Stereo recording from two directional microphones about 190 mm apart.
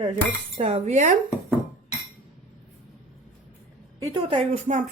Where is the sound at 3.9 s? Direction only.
25° right (ahead or behind); by 4.8 s 40° right (ahead or behind).